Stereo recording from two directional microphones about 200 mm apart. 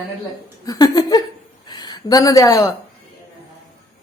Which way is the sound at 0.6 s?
20° left (ahead or behind).